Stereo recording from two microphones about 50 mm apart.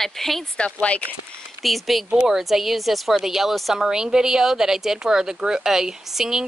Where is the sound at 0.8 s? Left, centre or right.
Left.